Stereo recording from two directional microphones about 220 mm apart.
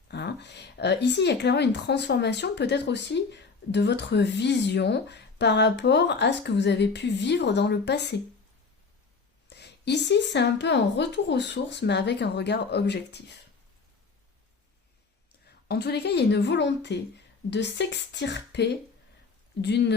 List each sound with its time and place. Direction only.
0.1 s a woman's voice: 50° left (ahead or behind)
9.5 s a woman's voice: 50° left (ahead or behind)
15.4 s a woman's voice: 50° left (ahead or behind)